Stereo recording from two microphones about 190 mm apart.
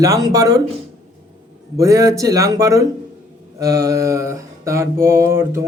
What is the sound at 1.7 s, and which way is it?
Mantra, 15° right (ahead or behind).